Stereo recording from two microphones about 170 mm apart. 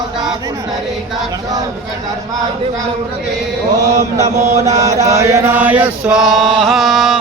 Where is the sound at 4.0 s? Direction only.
20° right (ahead or behind); by 7.2 s centre (ahead or behind).